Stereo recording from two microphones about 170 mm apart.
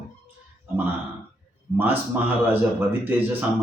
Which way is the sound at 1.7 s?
10° right (ahead or behind).